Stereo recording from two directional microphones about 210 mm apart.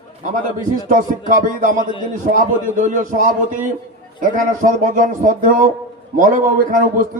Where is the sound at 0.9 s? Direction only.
40° right (ahead or behind).